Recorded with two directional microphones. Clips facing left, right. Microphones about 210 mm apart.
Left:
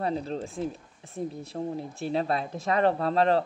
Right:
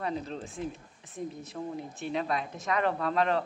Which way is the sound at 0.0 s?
35° left (ahead or behind).